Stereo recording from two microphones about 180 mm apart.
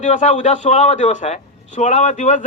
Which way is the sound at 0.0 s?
40° left (ahead or behind).